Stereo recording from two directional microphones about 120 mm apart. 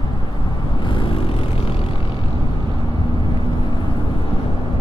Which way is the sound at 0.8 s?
45° left (ahead or behind).